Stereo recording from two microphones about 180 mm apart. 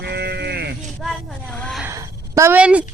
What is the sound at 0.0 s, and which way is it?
Sheep, 65° right (ahead or behind).